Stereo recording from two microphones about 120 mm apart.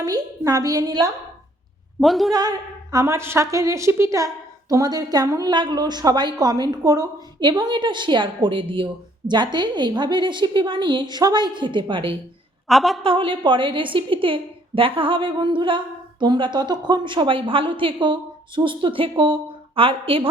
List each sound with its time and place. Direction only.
0.0 s a woman's voice: 30° right (ahead or behind)
2.0 s a woman's voice: centre (ahead or behind)
2.3 s a woman's voice: 35° right (ahead or behind)
12.6 s a woman's voice: centre (ahead or behind)
13.0 s speech: 50° right (ahead or behind)